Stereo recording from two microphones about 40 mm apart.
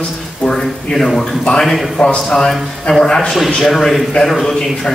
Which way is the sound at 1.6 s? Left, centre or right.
Centre.